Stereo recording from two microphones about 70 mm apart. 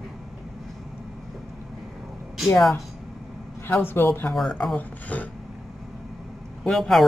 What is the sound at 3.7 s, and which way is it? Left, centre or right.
Speech, left.